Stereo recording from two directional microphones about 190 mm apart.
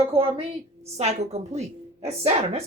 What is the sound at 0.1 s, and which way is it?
A man's voice, 30° right (ahead or behind).